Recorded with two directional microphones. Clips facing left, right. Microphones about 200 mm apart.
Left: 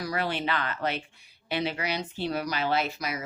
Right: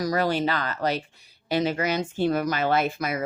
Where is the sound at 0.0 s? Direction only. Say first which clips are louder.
Right 6 dB; 40° right (ahead or behind).